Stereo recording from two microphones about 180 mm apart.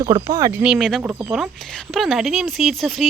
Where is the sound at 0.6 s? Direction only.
Centre (ahead or behind).